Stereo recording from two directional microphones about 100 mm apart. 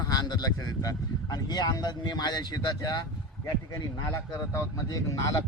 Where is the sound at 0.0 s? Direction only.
40° left (ahead or behind).